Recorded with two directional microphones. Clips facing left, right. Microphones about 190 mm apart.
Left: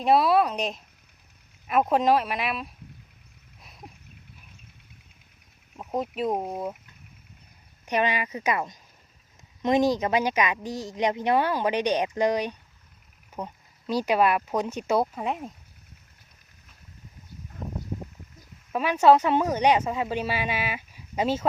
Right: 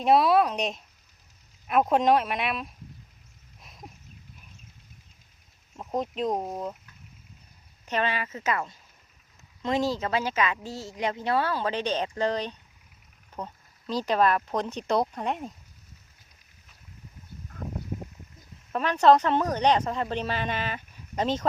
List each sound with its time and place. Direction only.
0.0 s speech: centre (ahead or behind)
3.6 s a sound: centre (ahead or behind)
5.7 s speech: 5° left (ahead or behind)
7.9 s a woman's voice: 15° left (ahead or behind)
18.7 s a woman's voice: 10° left (ahead or behind)